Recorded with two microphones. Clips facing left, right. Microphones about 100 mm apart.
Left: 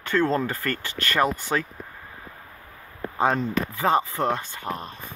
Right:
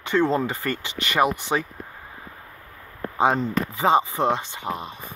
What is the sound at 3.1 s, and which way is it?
Speech, 15° right (ahead or behind).